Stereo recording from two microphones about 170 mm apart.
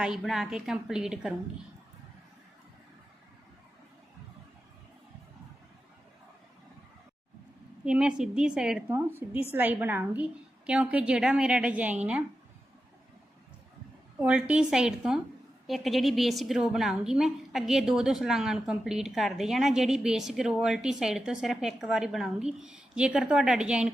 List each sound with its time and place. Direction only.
0.0 s a woman's voice: centre (ahead or behind)
7.9 s a woman's voice: 5° right (ahead or behind)
14.2 s a woman's voice: 10° right (ahead or behind)